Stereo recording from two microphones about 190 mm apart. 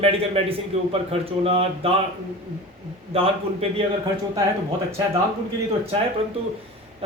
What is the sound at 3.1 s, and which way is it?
Speech, 30° right (ahead or behind).